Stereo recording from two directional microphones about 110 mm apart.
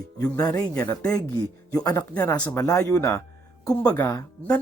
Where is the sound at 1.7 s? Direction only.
35° left (ahead or behind).